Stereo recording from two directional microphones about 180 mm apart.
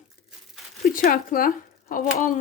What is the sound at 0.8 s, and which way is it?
Speech, 50° left (ahead or behind).